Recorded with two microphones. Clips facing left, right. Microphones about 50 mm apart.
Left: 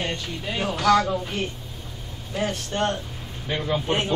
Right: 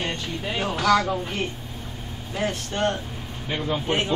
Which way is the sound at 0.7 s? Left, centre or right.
Right.